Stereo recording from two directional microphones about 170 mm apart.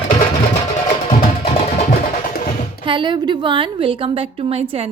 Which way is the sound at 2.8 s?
30° right (ahead or behind).